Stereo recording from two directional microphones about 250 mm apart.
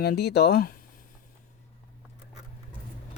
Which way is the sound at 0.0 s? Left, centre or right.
Left.